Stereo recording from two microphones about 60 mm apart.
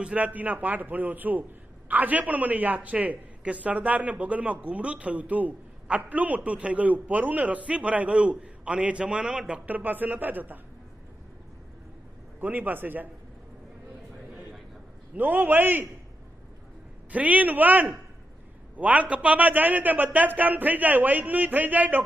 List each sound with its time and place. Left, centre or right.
0.0 s speech: right
9.7 s a man's voice: right
12.4 s a man's voice: right
15.1 s a man's voice: right
17.1 s speech: right